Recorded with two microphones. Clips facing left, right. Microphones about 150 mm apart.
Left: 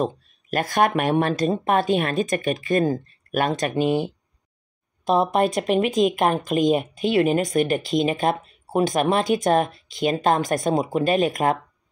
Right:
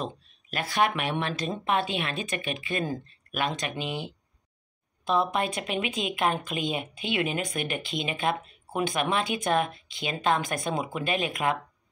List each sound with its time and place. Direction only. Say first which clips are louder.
0.0 s speech: left 10 dB; 45° left (ahead or behind)